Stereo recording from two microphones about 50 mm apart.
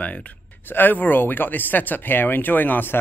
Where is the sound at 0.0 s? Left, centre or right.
Left.